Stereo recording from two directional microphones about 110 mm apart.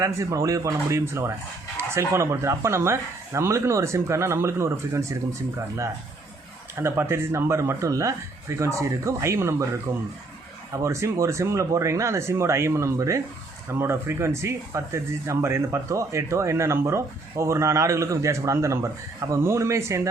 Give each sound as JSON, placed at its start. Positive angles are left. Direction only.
{"t": 0.0, "sound": "speech", "side_deg": -30}